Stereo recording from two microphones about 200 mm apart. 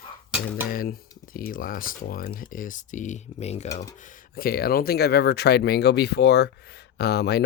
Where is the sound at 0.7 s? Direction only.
45° left (ahead or behind).